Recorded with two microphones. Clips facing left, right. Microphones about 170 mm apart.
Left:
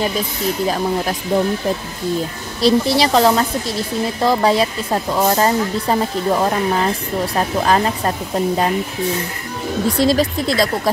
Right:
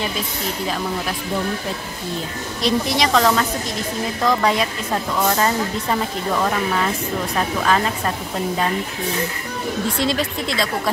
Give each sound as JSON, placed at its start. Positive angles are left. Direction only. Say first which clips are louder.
{"t": 0.7, "sound": "speech", "louder": "left 4 dB", "side_deg": 40}
{"t": 2.6, "sound": "speech", "louder": "left 5 dB", "side_deg": 35}
{"t": 9.8, "sound": "speech", "louder": "left 8 dB", "side_deg": 40}